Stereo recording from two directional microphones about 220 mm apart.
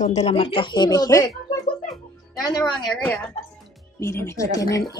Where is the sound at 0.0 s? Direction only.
30° left (ahead or behind).